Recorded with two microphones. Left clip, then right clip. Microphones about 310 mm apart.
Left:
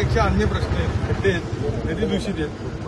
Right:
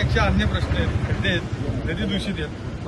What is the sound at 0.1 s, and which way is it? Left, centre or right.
Speech, centre.